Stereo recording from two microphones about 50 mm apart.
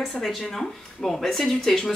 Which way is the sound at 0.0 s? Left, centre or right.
Centre.